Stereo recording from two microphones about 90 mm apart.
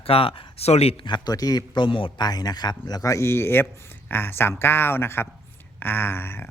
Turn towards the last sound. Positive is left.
turn(degrees=25)  # may be behind; listen again after turning